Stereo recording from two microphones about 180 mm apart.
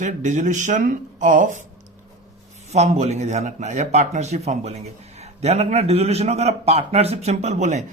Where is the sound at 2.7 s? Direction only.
40° right (ahead or behind).